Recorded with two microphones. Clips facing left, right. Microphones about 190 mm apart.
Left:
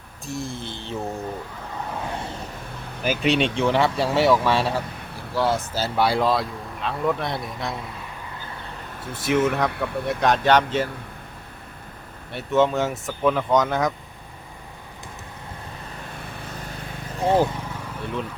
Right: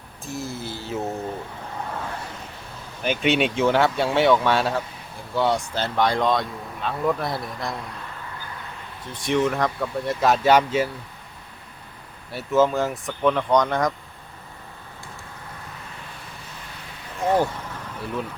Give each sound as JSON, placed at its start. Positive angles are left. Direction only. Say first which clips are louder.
{"t": 0.3, "sound": "mantra", "louder": "even", "side_deg": -5}
{"t": 3.0, "sound": "speech", "louder": "even", "side_deg": 0}
{"t": 9.2, "sound": "speech", "louder": "left 1 dB", "side_deg": 5}
{"t": 12.3, "sound": "speech", "louder": "even", "side_deg": 0}
{"t": 17.2, "sound": "speech", "louder": "left 1 dB", "side_deg": 25}
{"t": 18.0, "sound": "speech", "louder": "even", "side_deg": 0}